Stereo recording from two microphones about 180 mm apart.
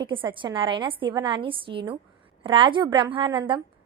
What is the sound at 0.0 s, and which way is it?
A woman's voice, 25° right (ahead or behind).